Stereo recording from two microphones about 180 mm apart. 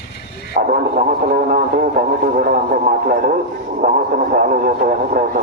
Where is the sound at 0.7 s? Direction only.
50° right (ahead or behind).